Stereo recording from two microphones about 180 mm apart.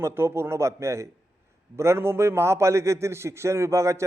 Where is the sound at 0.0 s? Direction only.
15° right (ahead or behind).